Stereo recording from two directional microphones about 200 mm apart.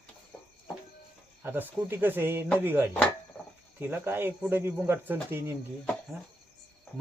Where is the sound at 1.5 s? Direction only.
10° right (ahead or behind).